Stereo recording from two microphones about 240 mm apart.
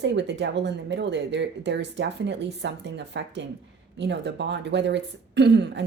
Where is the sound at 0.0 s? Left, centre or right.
Right.